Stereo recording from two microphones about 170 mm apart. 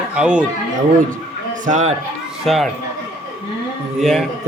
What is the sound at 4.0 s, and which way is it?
Speech, centre (ahead or behind).